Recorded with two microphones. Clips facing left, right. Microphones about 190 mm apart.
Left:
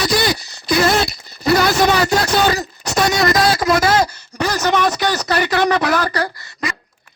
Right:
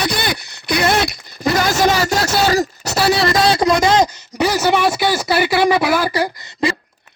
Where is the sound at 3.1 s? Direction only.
30° right (ahead or behind).